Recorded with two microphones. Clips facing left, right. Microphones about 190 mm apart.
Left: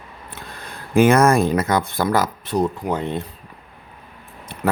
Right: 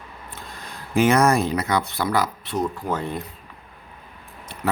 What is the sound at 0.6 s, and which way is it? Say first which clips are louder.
Speech: left 4 dB; 55° left (ahead or behind).